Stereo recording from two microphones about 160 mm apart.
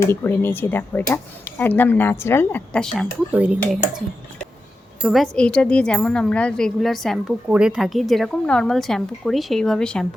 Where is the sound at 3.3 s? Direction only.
10° right (ahead or behind).